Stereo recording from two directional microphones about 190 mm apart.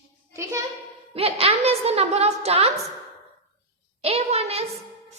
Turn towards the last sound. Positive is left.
turn(degrees=-30)  # may be behind; listen again after turning